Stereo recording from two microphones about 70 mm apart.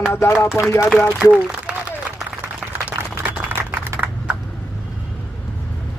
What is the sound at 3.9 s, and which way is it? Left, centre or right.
Computer keyboard, right.